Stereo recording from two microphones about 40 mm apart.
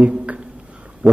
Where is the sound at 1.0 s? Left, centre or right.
Right.